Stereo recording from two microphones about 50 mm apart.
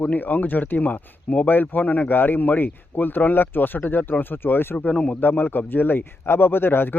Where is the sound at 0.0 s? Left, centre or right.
Left.